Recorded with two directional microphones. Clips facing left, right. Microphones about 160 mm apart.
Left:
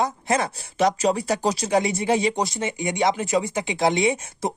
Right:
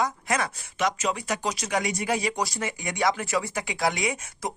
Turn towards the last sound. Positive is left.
turn(degrees=25)  # may be behind; listen again after turning